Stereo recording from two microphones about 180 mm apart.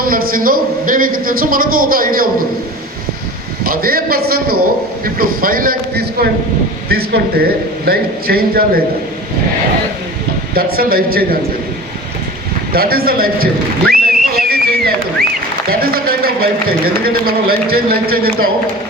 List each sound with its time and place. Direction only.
0.0 s a man's voice: 55° right (ahead or behind)
3.6 s a man's voice: 55° right (ahead or behind)
10.5 s a man's voice: 55° right (ahead or behind)
12.7 s a man's voice: 55° right (ahead or behind)
14.3 s a sound: 55° right (ahead or behind)
15.7 s a man's voice: 55° right (ahead or behind)